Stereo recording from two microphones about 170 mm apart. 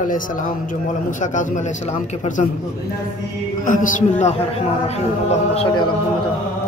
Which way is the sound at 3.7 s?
50° left (ahead or behind).